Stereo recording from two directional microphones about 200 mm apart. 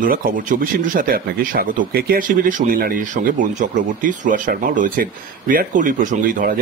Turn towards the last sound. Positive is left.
turn(degrees=-45)  # may be behind; listen again after turning